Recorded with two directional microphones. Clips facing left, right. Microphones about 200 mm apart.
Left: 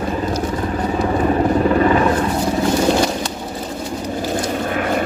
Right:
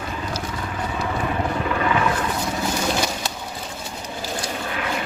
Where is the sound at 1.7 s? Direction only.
35° left (ahead or behind).